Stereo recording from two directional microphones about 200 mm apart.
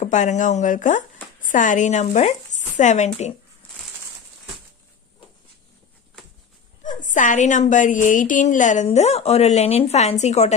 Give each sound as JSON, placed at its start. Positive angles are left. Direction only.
{"t": 0.0, "sound": "a woman's voice", "side_deg": 35}
{"t": 6.9, "sound": "a woman's voice", "side_deg": 40}